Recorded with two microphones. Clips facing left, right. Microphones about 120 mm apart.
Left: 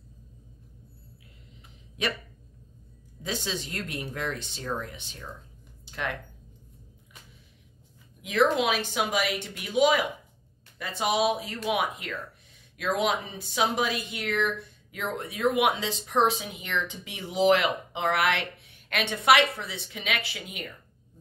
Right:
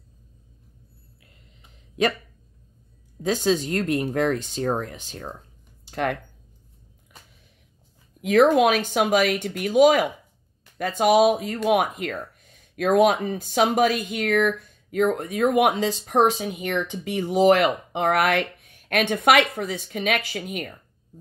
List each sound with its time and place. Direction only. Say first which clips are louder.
3.2 s speech: right 11 dB; 45° right (ahead or behind)
5.9 s a sound: right 8 dB; 50° right (ahead or behind)
8.2 s speech: right 7 dB; 50° right (ahead or behind)